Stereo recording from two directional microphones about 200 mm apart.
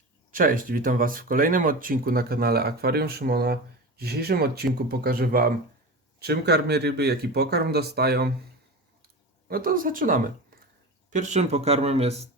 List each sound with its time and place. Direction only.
0.3 s speech: 45° right (ahead or behind)
9.5 s speech: 45° right (ahead or behind)